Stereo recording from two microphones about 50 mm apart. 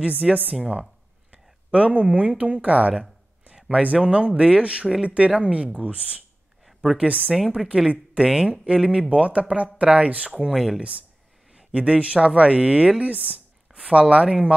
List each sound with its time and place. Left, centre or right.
0.0 s speech: right
3.5 s a sound: centre
3.8 s speech: right
6.6 s a sound: centre
7.1 s speech: right
10.3 s speech: centre
11.5 s speech: right
13.7 s speech: centre